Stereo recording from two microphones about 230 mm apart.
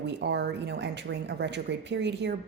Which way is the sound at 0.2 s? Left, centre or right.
Right.